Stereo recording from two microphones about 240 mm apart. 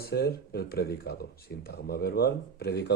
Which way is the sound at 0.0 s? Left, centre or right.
Left.